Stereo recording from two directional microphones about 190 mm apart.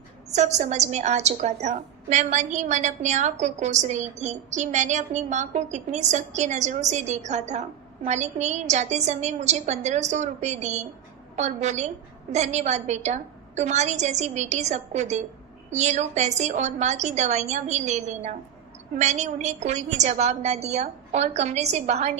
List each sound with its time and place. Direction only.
0.3 s a woman's voice: 35° right (ahead or behind)